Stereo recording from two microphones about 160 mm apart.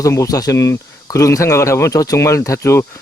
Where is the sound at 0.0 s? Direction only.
20° left (ahead or behind).